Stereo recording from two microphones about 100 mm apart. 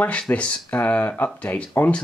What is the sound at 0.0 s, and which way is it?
Speech, 15° left (ahead or behind).